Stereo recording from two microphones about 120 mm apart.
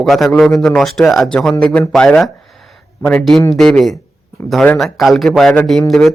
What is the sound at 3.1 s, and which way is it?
A man's voice, centre (ahead or behind).